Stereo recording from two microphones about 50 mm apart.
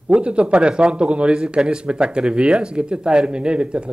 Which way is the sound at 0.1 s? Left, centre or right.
Right.